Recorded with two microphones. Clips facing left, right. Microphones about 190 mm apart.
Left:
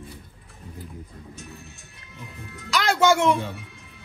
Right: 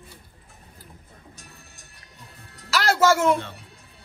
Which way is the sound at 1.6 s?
35° right (ahead or behind).